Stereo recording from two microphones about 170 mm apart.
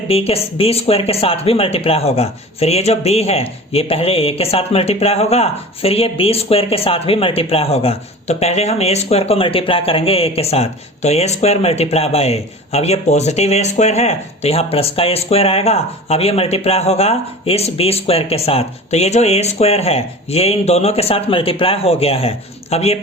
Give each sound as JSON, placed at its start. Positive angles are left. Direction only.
{"t": 0.1, "sound": "speech", "side_deg": 35}